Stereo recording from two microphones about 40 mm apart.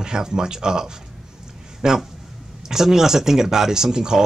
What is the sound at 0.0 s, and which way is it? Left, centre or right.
Speech, centre.